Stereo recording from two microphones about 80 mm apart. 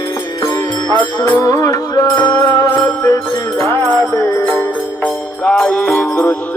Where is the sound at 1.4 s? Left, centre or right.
Left.